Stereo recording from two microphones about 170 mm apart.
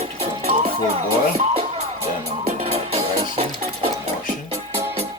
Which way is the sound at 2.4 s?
35° right (ahead or behind).